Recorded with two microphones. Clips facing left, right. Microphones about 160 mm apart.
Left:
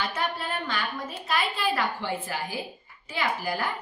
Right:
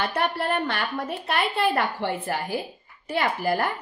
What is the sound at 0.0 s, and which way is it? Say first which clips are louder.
A woman's voice: right 5 dB; 60° right (ahead or behind).